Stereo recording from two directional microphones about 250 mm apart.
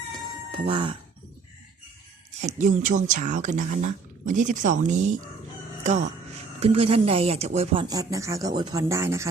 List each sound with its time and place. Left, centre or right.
0.1 s a sound: centre
0.7 s speech: centre
2.4 s speech: right
6.6 s speech: right